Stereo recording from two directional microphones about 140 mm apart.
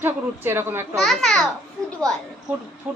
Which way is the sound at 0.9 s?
5° left (ahead or behind).